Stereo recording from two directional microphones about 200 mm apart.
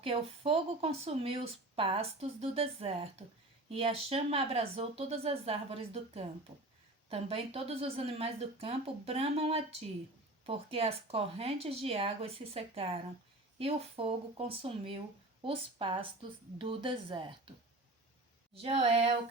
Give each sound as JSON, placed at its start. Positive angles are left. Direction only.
{"t": 0.0, "sound": "speech", "side_deg": -30}
{"t": 18.5, "sound": "speech", "side_deg": -30}